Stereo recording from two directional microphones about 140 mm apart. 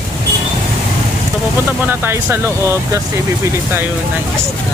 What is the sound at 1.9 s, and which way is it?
Speech, 15° right (ahead or behind).